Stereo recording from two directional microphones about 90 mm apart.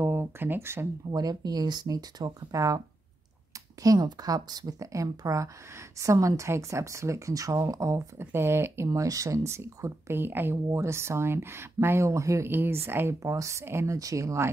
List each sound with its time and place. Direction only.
0.0 s speech: 30° right (ahead or behind)
1.1 s speech: 50° right (ahead or behind)
3.8 s a woman's voice: 45° right (ahead or behind)
12.4 s a woman's voice: 25° right (ahead or behind)